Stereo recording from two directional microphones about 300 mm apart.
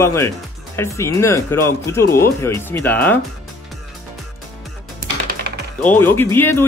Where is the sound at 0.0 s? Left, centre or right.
Centre.